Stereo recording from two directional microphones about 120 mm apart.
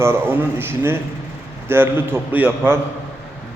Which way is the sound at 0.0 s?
20° right (ahead or behind).